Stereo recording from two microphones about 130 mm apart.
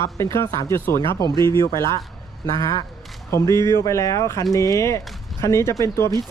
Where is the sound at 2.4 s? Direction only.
25° left (ahead or behind).